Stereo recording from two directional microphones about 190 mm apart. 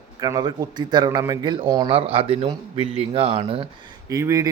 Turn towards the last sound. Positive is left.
turn(degrees=-15)  # may be behind; listen again after turning